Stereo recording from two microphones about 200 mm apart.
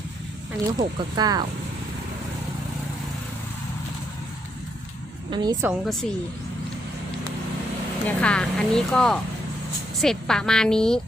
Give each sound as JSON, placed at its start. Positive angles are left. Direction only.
{"t": 0.8, "sound": "speech", "side_deg": -20}
{"t": 5.3, "sound": "speech", "side_deg": -20}
{"t": 5.8, "sound": "speech", "side_deg": 0}
{"t": 8.0, "sound": "speech", "side_deg": 5}